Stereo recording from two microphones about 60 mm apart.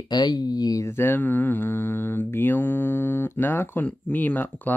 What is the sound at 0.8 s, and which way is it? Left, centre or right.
Speech, left.